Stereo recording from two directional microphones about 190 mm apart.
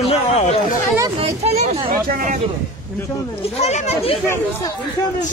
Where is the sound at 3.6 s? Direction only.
35° left (ahead or behind).